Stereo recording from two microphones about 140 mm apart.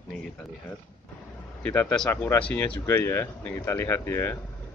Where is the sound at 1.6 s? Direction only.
15° left (ahead or behind).